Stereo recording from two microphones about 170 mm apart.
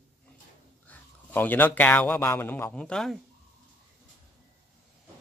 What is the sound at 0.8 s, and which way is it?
A man's voice, 10° left (ahead or behind).